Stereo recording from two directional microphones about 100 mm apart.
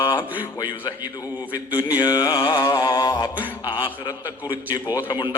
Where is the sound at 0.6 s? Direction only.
50° left (ahead or behind).